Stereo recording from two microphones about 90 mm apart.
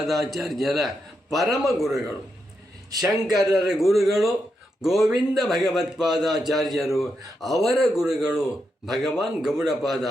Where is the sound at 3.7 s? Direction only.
5° right (ahead or behind).